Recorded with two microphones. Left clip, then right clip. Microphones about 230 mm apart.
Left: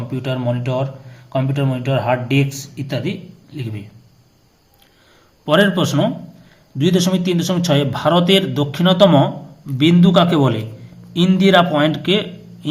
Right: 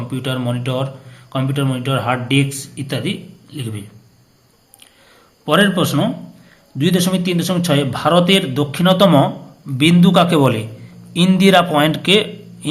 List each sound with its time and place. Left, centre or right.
0.1 s speech: centre
5.5 s a man's voice: centre